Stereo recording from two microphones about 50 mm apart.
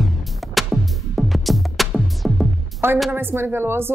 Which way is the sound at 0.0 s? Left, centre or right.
Centre.